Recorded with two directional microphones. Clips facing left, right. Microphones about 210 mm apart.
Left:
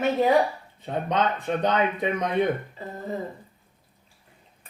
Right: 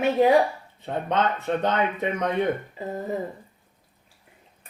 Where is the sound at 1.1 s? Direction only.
15° left (ahead or behind).